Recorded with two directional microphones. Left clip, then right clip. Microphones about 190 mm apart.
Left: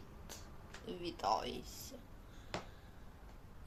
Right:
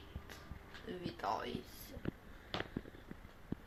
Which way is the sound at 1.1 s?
10° left (ahead or behind).